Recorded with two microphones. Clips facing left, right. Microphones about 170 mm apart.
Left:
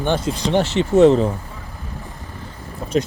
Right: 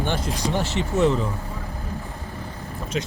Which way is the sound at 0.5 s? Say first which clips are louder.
Left 9 dB; 70° left (ahead or behind).